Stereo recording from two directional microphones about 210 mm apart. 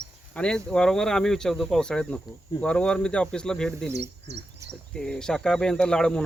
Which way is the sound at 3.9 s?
55° right (ahead or behind).